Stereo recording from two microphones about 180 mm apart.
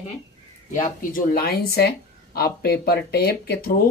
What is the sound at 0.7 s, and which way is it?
Speech, 50° left (ahead or behind).